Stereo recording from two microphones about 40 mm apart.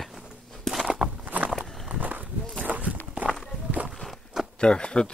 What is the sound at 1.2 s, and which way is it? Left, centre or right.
Walk, right.